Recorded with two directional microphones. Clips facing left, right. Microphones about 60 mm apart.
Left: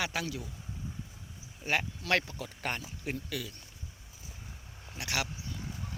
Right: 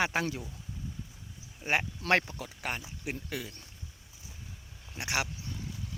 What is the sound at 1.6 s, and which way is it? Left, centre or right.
Speech, right.